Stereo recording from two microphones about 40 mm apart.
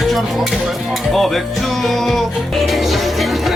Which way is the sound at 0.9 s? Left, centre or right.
Centre.